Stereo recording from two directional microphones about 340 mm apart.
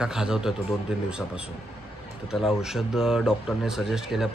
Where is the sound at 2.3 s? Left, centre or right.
Centre.